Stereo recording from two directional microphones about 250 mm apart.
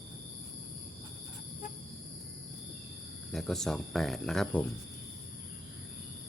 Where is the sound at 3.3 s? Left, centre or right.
Centre.